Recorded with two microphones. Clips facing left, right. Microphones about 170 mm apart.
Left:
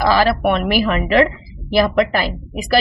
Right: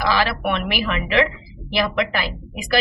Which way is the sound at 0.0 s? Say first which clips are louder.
Left 6 dB; 40° left (ahead or behind).